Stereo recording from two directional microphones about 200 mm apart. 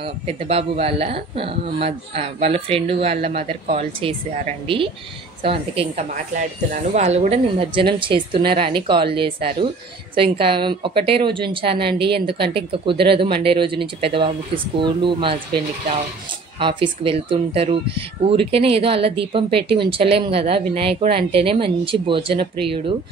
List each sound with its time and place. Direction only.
0.0 s speech: 30° right (ahead or behind)
16.5 s speech: 25° right (ahead or behind)